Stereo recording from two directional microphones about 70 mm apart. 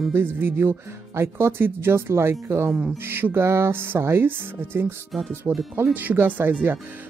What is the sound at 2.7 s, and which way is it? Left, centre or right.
Speech, centre.